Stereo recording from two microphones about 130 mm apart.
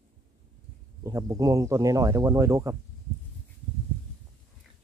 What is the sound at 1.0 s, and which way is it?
Speech, 25° right (ahead or behind).